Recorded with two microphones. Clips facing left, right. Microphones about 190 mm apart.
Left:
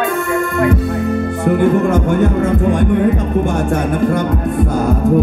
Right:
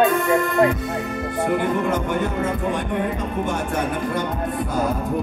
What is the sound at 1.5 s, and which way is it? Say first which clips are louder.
Music: left 10 dB; 50° left (ahead or behind).